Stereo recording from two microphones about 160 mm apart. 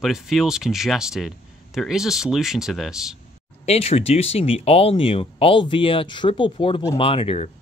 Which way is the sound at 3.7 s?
40° left (ahead or behind).